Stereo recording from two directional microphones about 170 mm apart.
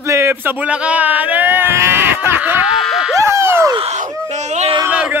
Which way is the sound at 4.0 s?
45° right (ahead or behind).